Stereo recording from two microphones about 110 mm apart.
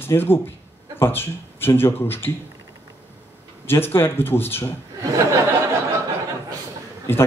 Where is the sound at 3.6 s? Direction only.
20° left (ahead or behind).